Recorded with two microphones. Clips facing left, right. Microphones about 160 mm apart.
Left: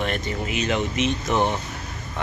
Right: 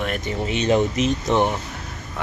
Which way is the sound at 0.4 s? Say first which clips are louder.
Right 7 dB; 35° right (ahead or behind).